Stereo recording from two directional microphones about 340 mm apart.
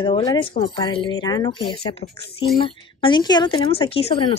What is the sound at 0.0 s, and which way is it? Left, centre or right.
A woman's voice, centre.